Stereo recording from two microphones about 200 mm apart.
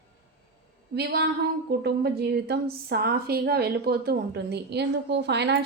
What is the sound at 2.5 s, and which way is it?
Speech, 55° right (ahead or behind).